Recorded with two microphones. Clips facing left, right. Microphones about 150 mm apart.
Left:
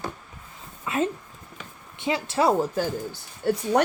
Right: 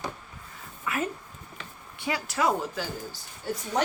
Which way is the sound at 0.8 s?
25° left (ahead or behind).